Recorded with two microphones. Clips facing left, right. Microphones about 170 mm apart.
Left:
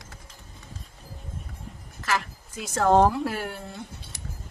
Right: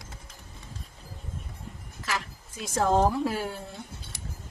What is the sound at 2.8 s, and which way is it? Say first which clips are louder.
Speech: left 4 dB; 70° left (ahead or behind).